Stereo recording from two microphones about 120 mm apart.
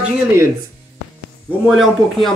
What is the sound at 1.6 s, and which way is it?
Speech, centre (ahead or behind).